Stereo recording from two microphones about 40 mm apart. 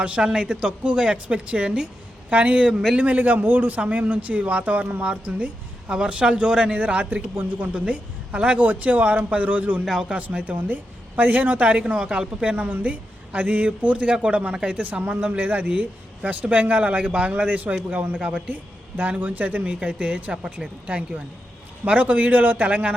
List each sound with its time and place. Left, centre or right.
0.2 s a woman's voice: right
2.3 s a woman's voice: right
6.7 s a woman's voice: right
7.7 s a woman's voice: right
8.5 s a woman's voice: right
9.8 s speech: centre
10.1 s a woman's voice: right
15.0 s a woman's voice: right
20.3 s speech: centre
20.8 s a woman's voice: right